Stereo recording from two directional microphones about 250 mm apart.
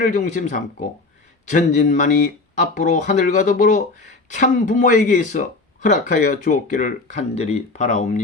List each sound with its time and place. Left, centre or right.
0.0 s speech: left